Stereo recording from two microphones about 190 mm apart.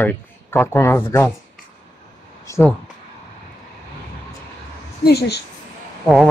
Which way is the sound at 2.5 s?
10° left (ahead or behind).